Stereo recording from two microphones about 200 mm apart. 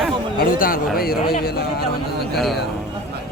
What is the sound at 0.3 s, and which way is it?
Speech, 45° left (ahead or behind).